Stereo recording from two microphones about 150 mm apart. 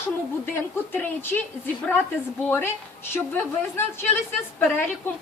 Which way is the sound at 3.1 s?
15° left (ahead or behind).